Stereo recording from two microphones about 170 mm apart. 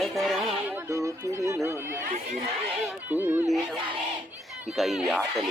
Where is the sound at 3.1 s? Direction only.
10° right (ahead or behind).